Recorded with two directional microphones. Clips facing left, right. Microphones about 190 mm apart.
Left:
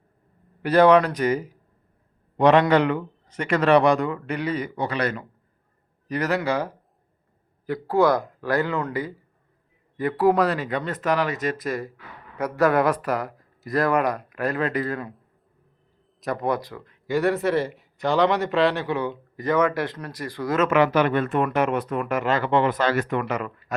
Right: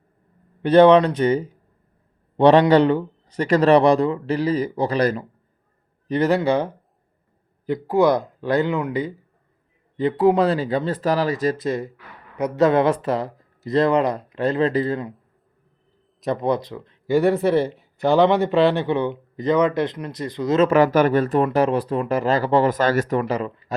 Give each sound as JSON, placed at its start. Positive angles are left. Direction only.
{"t": 0.6, "sound": "speech", "side_deg": -25}
{"t": 7.7, "sound": "speech", "side_deg": -20}
{"t": 16.2, "sound": "speech", "side_deg": -20}
{"t": 17.1, "sound": "speech", "side_deg": 0}
{"t": 18.9, "sound": "speech", "side_deg": -25}
{"t": 20.7, "sound": "speech", "side_deg": -40}